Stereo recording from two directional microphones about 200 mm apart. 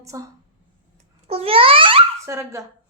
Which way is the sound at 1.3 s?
30° right (ahead or behind).